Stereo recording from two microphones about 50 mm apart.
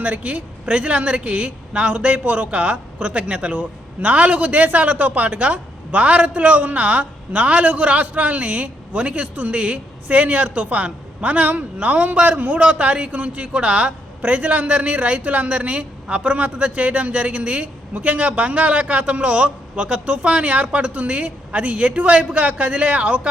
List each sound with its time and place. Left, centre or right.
0.0 s speech: right